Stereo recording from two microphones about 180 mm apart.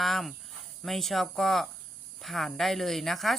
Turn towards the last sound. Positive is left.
turn(degrees=0)  # may be behind; listen again after turning